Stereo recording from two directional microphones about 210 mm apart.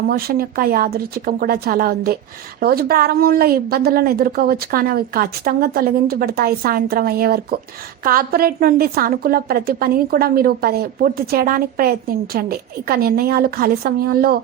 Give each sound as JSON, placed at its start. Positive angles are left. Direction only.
{"t": 0.1, "sound": "a woman's voice", "side_deg": -45}